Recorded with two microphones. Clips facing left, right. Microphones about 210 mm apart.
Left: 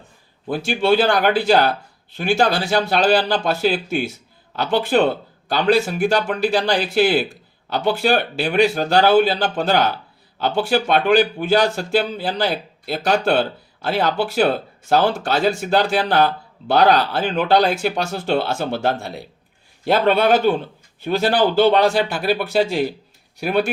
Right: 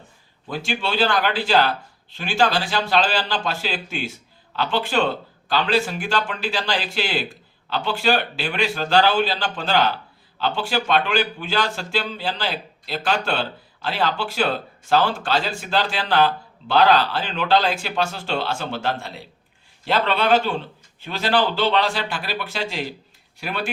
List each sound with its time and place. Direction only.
0.4 s speech: 50° left (ahead or behind)
5.6 s speech: 55° left (ahead or behind)